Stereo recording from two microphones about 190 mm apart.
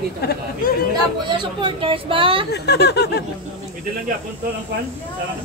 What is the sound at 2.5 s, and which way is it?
Speech, 60° left (ahead or behind).